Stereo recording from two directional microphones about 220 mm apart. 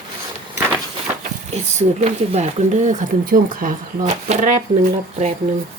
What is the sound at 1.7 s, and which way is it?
Speech, 30° right (ahead or behind).